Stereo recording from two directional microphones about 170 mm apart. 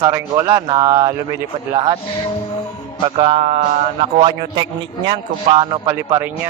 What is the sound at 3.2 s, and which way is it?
A man's voice, 35° right (ahead or behind).